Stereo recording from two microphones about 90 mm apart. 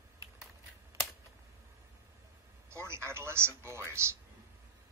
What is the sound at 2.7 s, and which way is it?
A man's voice, 30° right (ahead or behind).